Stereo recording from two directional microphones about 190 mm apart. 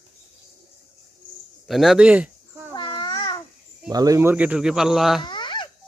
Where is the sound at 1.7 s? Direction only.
Centre (ahead or behind).